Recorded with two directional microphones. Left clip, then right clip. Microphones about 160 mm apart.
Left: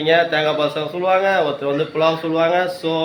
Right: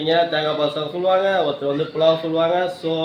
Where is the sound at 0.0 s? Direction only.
Centre (ahead or behind).